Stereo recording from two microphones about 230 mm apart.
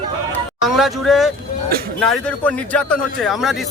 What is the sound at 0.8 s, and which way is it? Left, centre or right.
A man's voice, centre.